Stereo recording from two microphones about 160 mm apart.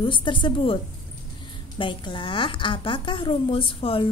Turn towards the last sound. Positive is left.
turn(degrees=35)  # may be behind; listen again after turning